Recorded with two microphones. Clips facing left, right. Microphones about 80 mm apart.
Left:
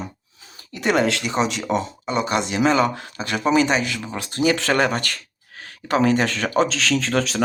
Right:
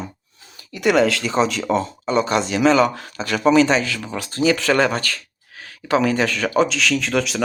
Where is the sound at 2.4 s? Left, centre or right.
Left.